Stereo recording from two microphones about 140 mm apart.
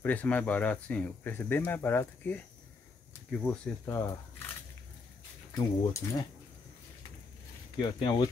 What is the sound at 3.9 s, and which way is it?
Speech, 20° left (ahead or behind).